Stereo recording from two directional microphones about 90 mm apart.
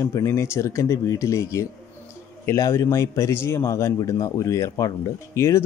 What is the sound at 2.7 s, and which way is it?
Speech, 25° left (ahead or behind).